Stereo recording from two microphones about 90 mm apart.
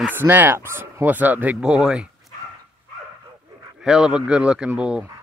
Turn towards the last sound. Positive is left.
turn(degrees=-10)  # may be behind; listen again after turning